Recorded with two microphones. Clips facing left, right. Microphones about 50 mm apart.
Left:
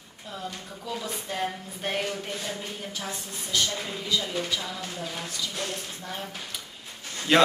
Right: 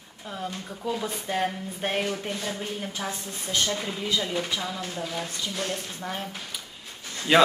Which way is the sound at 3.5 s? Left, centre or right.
Right.